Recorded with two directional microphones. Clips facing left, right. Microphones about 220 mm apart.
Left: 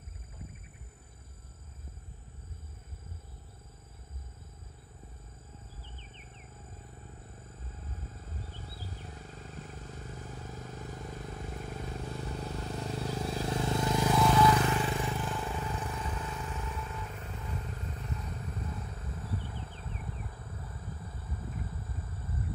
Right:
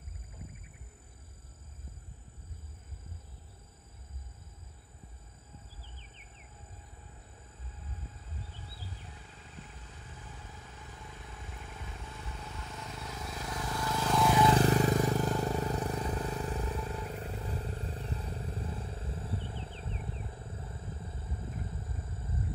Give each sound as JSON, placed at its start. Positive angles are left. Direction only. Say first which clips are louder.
{"t": 8.3, "sound": "wild animals", "louder": "left 3 dB", "side_deg": 45}
{"t": 14.5, "sound": "vehicle", "louder": "right 3 dB", "side_deg": -40}
{"t": 22.0, "sound": "wild animals", "louder": "even", "side_deg": -25}